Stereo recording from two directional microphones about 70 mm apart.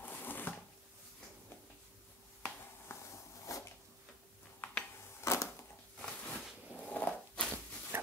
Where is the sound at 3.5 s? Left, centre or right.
Left.